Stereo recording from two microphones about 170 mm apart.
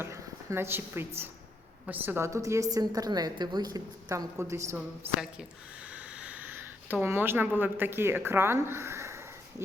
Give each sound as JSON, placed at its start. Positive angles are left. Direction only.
{"t": 0.0, "sound": "a woman's voice", "side_deg": -15}